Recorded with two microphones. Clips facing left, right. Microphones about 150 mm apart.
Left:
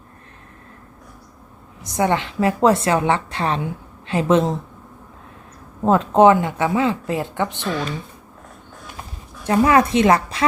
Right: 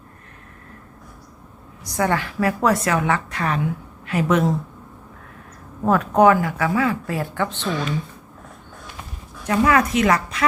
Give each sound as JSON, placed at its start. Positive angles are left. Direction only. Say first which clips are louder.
{"t": 1.8, "sound": "a woman's voice", "louder": "left 2 dB", "side_deg": 20}
{"t": 5.8, "sound": "a woman's voice", "louder": "left 2 dB", "side_deg": 25}
{"t": 9.4, "sound": "a woman's voice", "louder": "left 3 dB", "side_deg": 30}